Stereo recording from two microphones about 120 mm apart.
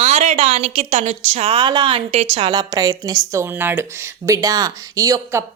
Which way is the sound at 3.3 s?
20° right (ahead or behind).